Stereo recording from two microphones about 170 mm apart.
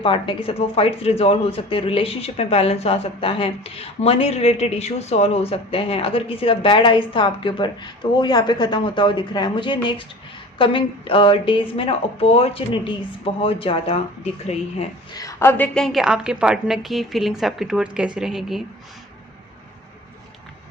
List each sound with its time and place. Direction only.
0.0 s speech: 30° left (ahead or behind)
15.1 s a woman's voice: 20° left (ahead or behind); by 18.6 s centre (ahead or behind)